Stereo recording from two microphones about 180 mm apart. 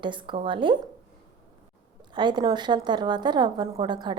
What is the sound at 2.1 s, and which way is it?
A woman's voice, 25° right (ahead or behind).